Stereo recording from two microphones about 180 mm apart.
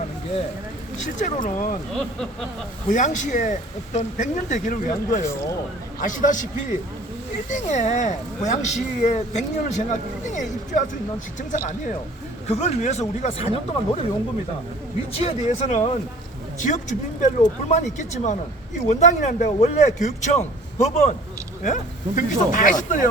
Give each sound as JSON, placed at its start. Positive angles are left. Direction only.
{"t": 1.2, "sound": "speech", "side_deg": 45}
{"t": 2.9, "sound": "speech", "side_deg": 45}
{"t": 5.2, "sound": "speech", "side_deg": 15}
{"t": 6.0, "sound": "speech", "side_deg": 45}
{"t": 12.5, "sound": "speech", "side_deg": 40}
{"t": 15.1, "sound": "speech", "side_deg": 35}